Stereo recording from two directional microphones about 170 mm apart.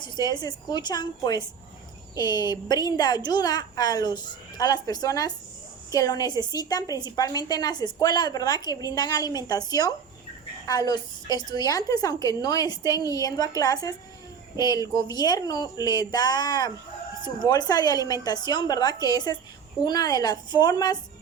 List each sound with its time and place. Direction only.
0.0 s a woman's voice: 25° left (ahead or behind)